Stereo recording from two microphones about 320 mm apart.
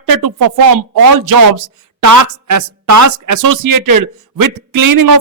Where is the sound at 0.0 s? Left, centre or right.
Right.